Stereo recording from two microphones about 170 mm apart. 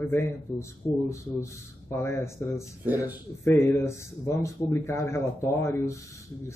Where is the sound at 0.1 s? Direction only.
15° left (ahead or behind).